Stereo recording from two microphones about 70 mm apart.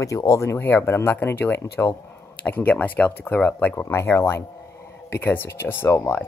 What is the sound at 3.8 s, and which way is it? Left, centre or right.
Speech, left.